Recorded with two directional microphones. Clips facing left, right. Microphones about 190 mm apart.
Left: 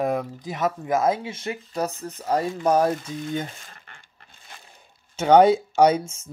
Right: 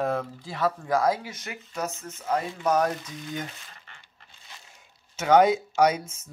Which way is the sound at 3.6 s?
50° left (ahead or behind).